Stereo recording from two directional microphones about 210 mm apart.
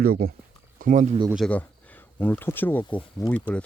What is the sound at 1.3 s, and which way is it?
Speech, 5° left (ahead or behind).